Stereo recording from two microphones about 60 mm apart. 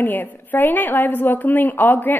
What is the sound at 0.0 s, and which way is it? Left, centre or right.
A woman's voice, left.